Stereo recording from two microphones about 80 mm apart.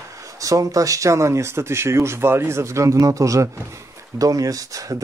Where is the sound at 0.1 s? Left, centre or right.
Right.